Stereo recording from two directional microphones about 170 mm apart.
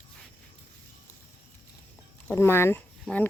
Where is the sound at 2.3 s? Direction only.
15° left (ahead or behind).